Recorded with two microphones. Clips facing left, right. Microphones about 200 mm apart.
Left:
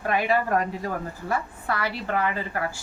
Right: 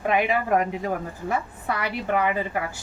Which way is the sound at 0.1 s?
15° right (ahead or behind).